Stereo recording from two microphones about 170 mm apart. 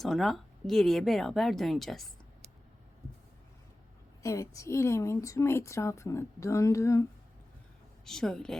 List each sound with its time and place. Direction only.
0.0 s speech: centre (ahead or behind)
4.2 s a woman's voice: 20° left (ahead or behind)
8.0 s speech: 5° left (ahead or behind)